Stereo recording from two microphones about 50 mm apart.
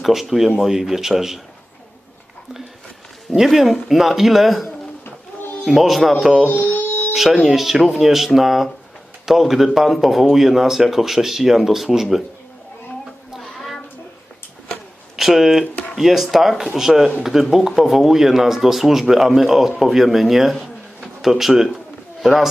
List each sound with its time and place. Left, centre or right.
0.0 s speech: centre
3.4 s speech: centre
5.7 s speech: centre
6.5 s speech: left
6.8 s a sound: left
7.1 s speech: centre
13.4 s a sound: centre
15.1 s speech: centre
20.6 s a sound: centre
22.2 s speech: centre